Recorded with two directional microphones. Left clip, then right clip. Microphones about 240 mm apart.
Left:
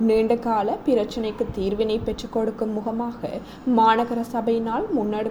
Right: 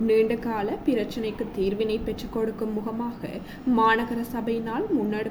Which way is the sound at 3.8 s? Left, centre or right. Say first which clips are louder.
Left 4 dB; centre.